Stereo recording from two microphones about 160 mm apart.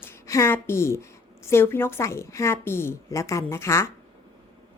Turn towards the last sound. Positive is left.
turn(degrees=15)  # may be behind; listen again after turning